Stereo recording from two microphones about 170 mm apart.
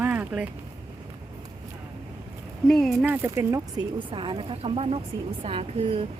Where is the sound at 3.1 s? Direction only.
15° right (ahead or behind).